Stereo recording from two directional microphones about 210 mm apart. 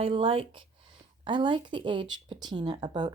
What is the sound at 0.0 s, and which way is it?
Speech, 25° right (ahead or behind).